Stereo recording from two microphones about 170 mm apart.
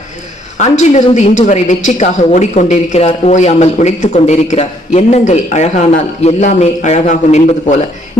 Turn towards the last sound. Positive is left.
turn(degrees=45)  # may be behind; listen again after turning